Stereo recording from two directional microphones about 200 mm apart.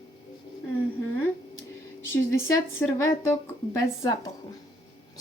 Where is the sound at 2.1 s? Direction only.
15° left (ahead or behind).